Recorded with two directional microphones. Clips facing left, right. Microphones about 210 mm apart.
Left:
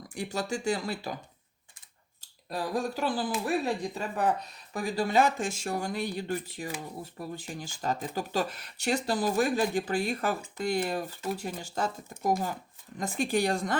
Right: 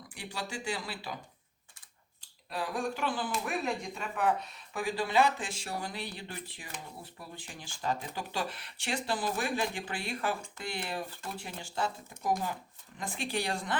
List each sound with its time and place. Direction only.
0.1 s speech: 45° left (ahead or behind)
2.5 s speech: 40° left (ahead or behind)